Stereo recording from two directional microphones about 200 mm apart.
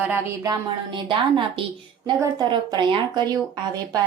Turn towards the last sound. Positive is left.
turn(degrees=-20)  # may be behind; listen again after turning